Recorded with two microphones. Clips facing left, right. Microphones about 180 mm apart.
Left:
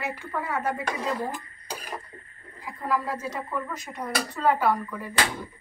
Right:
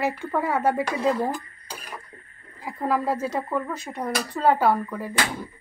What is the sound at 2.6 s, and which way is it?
Speech, 30° right (ahead or behind).